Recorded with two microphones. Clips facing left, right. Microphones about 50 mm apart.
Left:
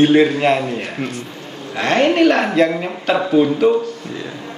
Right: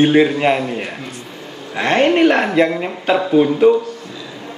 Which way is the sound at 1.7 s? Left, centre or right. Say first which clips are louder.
Right 1 dB; centre.